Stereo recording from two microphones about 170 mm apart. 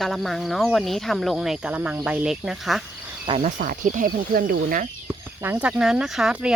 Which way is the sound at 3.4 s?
50° right (ahead or behind).